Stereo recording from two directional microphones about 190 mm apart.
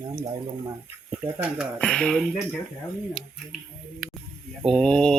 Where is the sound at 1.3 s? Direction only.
10° right (ahead or behind).